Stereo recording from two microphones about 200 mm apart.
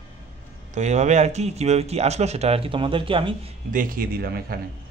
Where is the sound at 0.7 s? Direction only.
35° right (ahead or behind).